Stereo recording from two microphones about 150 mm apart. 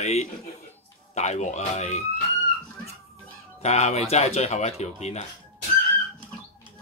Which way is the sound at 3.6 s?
45° left (ahead or behind).